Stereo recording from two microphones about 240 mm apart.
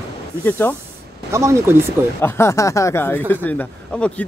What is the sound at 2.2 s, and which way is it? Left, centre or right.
Speech, centre.